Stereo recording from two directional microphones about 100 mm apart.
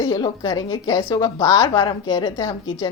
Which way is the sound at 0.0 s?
45° left (ahead or behind).